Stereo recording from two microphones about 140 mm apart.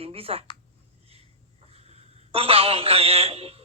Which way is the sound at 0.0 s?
45° right (ahead or behind).